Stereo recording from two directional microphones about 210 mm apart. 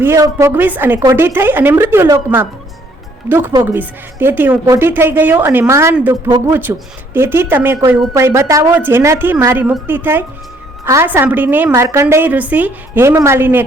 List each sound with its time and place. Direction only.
0.0 s a woman's voice: 15° right (ahead or behind)